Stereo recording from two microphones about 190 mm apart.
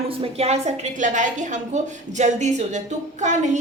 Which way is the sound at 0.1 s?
30° right (ahead or behind).